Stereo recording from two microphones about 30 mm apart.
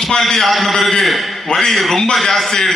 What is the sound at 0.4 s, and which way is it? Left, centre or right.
A man's voice, centre.